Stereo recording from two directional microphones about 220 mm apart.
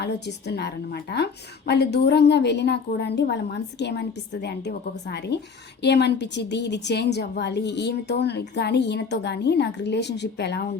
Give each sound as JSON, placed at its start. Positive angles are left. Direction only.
{"t": 0.0, "sound": "a woman's voice", "side_deg": 50}